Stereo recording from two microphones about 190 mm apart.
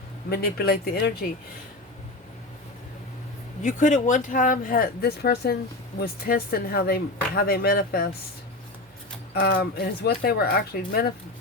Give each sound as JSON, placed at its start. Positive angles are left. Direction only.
{"t": 0.3, "sound": "speech", "side_deg": 55}
{"t": 3.6, "sound": "speech", "side_deg": 40}
{"t": 9.3, "sound": "speech", "side_deg": 60}